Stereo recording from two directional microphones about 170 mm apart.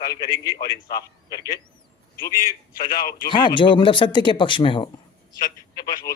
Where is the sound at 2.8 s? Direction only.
60° left (ahead or behind).